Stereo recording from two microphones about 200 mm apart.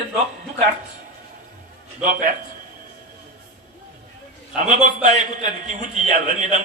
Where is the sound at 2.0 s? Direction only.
45° right (ahead or behind).